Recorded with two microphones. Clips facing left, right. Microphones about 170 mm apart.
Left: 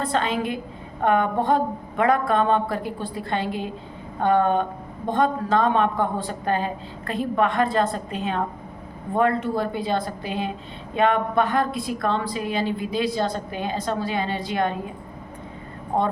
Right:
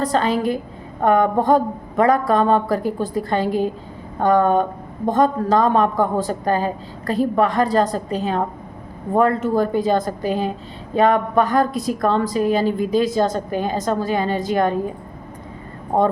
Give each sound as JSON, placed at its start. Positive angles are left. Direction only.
{"t": 0.0, "sound": "a woman's voice", "side_deg": -40}
{"t": 15.9, "sound": "a woman's voice", "side_deg": -45}